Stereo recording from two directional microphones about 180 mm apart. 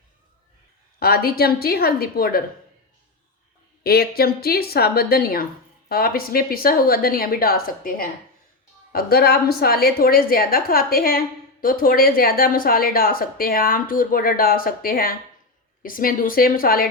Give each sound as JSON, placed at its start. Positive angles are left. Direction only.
{"t": 0.9, "sound": "a woman's voice", "side_deg": 55}
{"t": 3.8, "sound": "a woman's voice", "side_deg": 60}